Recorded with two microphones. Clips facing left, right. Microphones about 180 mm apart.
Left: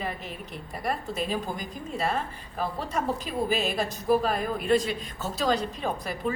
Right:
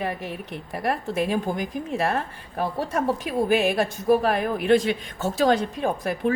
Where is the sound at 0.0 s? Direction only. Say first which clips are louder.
Right 5 dB; 60° right (ahead or behind).